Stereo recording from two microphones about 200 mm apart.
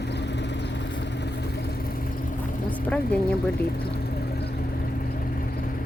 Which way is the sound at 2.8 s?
5° left (ahead or behind).